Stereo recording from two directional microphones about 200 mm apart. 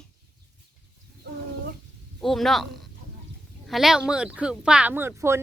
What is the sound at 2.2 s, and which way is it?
A woman's voice, centre (ahead or behind).